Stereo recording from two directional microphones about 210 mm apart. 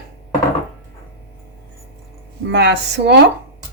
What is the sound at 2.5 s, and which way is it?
Speech, 55° right (ahead or behind).